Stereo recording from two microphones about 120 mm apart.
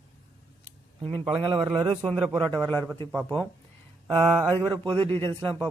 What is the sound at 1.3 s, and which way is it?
Speech, 45° right (ahead or behind).